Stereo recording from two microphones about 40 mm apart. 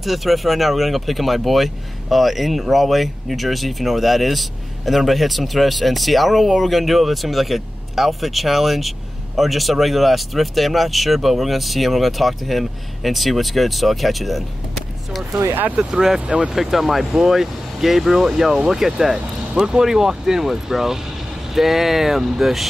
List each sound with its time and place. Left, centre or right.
0.0 s speech: centre
15.7 s speech: right
16.5 s speech: centre